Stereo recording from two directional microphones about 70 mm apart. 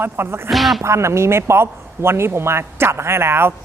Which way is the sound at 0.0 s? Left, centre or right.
Right.